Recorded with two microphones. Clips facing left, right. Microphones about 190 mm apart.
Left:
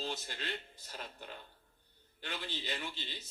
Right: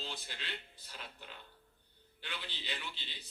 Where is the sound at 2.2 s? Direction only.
45° left (ahead or behind).